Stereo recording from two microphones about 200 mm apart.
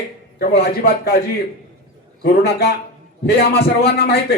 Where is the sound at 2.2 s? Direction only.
50° left (ahead or behind).